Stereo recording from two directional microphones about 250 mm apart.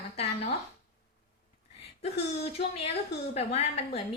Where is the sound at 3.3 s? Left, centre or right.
Left.